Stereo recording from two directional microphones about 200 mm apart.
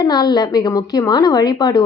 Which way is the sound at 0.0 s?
20° left (ahead or behind).